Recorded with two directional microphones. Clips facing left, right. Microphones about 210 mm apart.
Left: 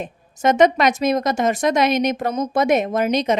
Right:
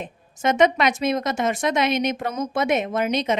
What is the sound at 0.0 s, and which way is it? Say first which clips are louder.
Speech: left 4 dB; 40° left (ahead or behind).